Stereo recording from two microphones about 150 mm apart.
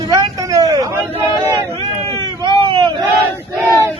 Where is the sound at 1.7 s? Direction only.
35° right (ahead or behind).